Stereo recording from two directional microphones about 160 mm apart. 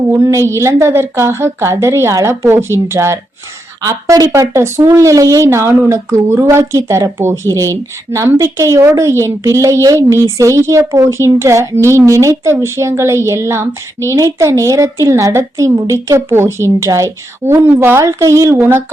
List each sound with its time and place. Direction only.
0.2 s speech: 15° right (ahead or behind)